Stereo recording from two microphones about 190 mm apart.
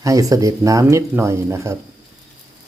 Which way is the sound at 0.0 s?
15° right (ahead or behind).